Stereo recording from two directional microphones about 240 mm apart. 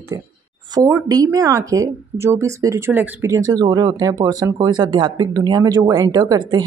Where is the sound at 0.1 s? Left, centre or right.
Centre.